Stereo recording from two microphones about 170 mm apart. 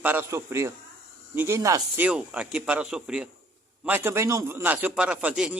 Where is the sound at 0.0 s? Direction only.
10° right (ahead or behind).